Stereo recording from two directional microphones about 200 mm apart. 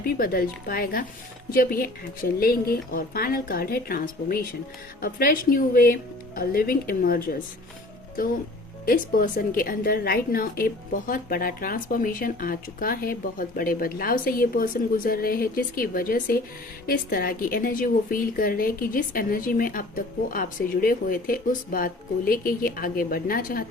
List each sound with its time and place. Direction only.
0.0 s a woman's voice: 45° left (ahead or behind)
8.9 s a woman's voice: 45° left (ahead or behind)